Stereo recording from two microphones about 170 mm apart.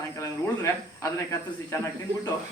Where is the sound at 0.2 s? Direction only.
15° left (ahead or behind).